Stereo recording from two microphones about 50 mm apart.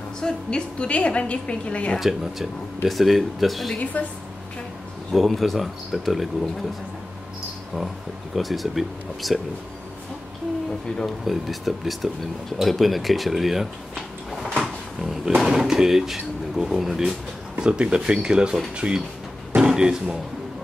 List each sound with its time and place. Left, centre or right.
0.2 s a woman's voice: centre
2.0 s speech: centre
3.9 s a woman's voice: left
5.1 s speech: centre
8.4 s speech: centre
10.9 s speech: centre
11.2 s speech: centre
17.6 s speech: centre
19.5 s a sound: centre